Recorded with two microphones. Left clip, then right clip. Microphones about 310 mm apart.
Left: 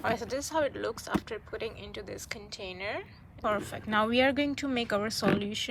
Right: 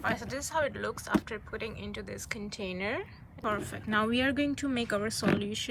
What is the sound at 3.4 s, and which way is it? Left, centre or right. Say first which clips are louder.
Speech: left 2 dB; centre.